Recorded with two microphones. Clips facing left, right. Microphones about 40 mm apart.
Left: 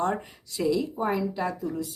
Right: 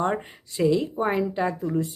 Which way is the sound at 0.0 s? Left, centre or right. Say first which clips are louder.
Right 2 dB; right.